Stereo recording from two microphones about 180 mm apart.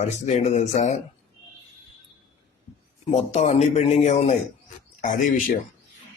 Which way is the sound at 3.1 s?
40° left (ahead or behind).